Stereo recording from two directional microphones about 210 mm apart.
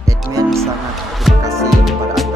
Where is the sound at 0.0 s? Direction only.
15° right (ahead or behind).